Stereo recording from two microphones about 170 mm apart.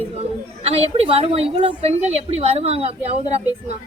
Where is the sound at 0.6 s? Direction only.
35° right (ahead or behind).